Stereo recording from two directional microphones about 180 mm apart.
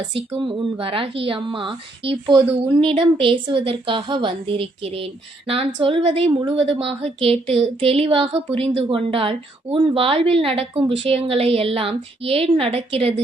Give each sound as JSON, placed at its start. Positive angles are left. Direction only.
{"t": 0.3, "sound": "a woman's voice", "side_deg": -30}